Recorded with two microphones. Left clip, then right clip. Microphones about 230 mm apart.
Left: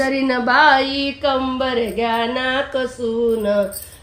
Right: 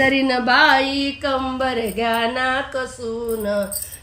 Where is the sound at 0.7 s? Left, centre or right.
Right.